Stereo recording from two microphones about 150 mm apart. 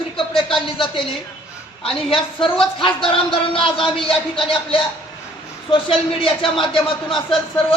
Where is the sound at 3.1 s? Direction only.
35° left (ahead or behind).